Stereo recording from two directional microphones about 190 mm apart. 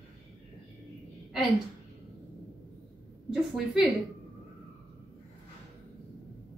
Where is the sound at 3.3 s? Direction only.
Centre (ahead or behind).